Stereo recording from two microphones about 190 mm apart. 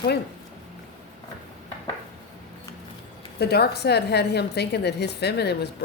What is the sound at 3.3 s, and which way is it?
A woman's voice, 60° left (ahead or behind).